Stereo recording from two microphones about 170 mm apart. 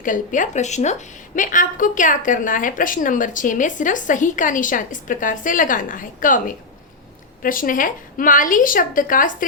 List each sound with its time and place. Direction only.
0.0 s a woman's voice: 50° left (ahead or behind)
7.4 s a woman's voice: 55° left (ahead or behind)